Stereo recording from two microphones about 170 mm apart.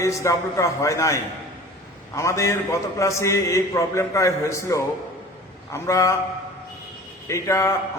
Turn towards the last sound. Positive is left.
turn(degrees=15)  # may be behind; listen again after turning